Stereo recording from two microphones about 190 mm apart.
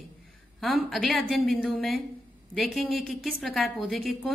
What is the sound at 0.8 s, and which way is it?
A woman's voice, 5° left (ahead or behind).